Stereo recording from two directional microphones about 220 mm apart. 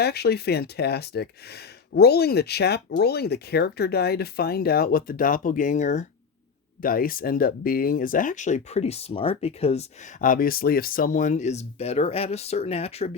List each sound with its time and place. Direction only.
0.0 s speech: 45° left (ahead or behind); by 13.1 s 30° left (ahead or behind)